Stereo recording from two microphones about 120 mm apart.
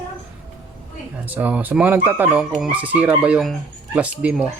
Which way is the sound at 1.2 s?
15° right (ahead or behind).